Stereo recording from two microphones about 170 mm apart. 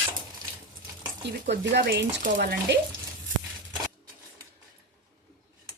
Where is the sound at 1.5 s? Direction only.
85° right.